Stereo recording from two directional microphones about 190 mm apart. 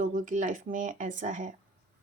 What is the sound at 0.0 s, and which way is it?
Speech, 45° right (ahead or behind).